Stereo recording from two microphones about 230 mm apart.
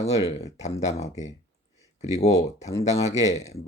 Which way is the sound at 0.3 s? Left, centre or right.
Left.